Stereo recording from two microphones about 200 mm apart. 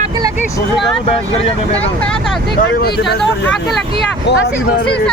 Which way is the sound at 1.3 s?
30° left (ahead or behind).